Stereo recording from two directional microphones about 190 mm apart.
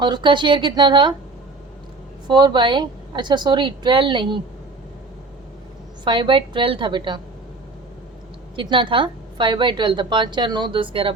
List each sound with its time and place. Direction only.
0.0 s a woman's voice: 25° right (ahead or behind)
2.2 s a woman's voice: 25° right (ahead or behind)
6.1 s a woman's voice: 25° right (ahead or behind)
8.5 s a woman's voice: 25° right (ahead or behind)